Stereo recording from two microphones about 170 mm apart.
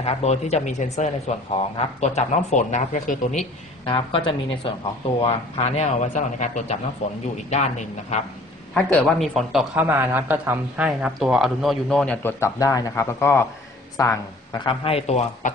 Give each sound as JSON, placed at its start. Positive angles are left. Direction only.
{"t": 0.0, "sound": "speech", "side_deg": 40}
{"t": 3.8, "sound": "a man's voice", "side_deg": 30}
{"t": 8.7, "sound": "a man's voice", "side_deg": 5}